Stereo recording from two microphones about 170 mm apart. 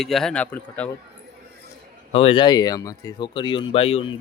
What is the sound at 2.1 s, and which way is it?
Speech, 35° left (ahead or behind).